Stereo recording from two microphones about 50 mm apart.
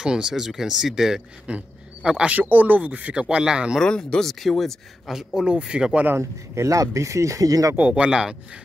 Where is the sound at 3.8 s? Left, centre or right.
Centre.